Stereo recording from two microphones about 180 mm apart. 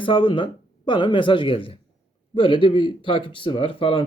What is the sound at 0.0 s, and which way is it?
Speech, 30° left (ahead or behind).